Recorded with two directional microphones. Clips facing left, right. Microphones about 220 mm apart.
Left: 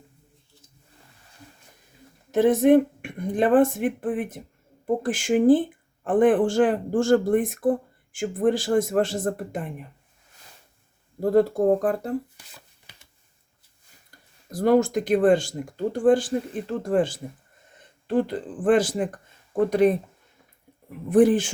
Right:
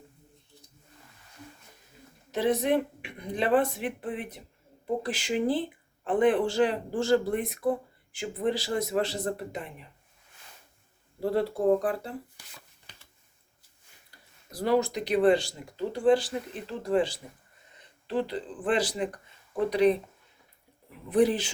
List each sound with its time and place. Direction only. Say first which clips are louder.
2.3 s speech: left 9 dB; 50° left (ahead or behind)
11.2 s speech: left 7 dB; 45° left (ahead or behind)
14.5 s speech: left 6 dB; 50° left (ahead or behind)
21.1 s speech: left 6 dB; 50° left (ahead or behind)